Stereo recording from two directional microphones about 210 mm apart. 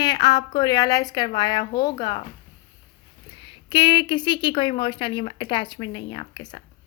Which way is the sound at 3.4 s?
25° left (ahead or behind).